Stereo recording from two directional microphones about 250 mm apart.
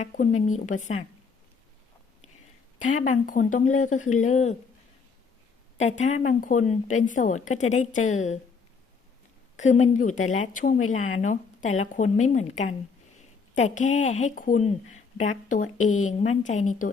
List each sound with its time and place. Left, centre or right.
0.0 s speech: left
2.9 s speech: left
5.8 s speech: left
9.6 s speech: left
13.6 s speech: left